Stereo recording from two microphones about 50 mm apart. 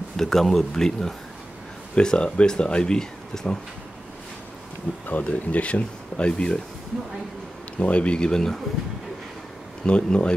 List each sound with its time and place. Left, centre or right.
0.2 s speech: centre
5.0 s speech: left
7.8 s speech: left
9.8 s speech: left